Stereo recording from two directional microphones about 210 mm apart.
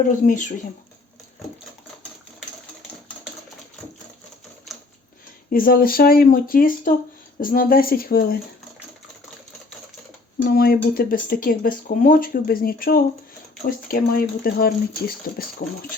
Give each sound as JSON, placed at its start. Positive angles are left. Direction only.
{"t": 0.3, "sound": "speech", "side_deg": 35}
{"t": 5.5, "sound": "speech", "side_deg": 45}
{"t": 10.4, "sound": "speech", "side_deg": 45}